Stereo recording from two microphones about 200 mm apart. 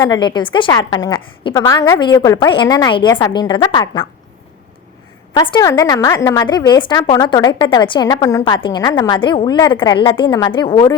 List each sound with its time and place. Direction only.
0.0 s a woman's voice: 20° left (ahead or behind)
5.3 s a woman's voice: 20° left (ahead or behind)